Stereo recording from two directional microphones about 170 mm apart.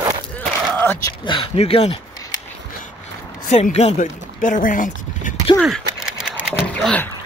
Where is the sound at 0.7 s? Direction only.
10° left (ahead or behind).